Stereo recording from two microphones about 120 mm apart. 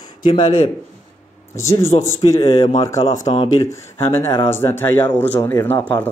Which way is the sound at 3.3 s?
50° left (ahead or behind).